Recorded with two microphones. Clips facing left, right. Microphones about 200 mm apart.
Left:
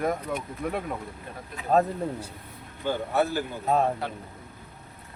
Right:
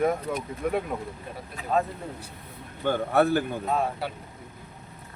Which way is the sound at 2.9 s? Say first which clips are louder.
Right 4 dB; 55° right (ahead or behind).